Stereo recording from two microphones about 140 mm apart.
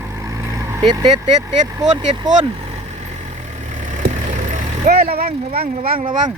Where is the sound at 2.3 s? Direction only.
65° right (ahead or behind).